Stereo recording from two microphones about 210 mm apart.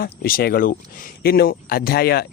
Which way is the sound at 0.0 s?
45° left (ahead or behind).